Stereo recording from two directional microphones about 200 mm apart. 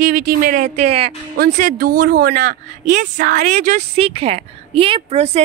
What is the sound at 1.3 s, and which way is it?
Speech, 45° right (ahead or behind).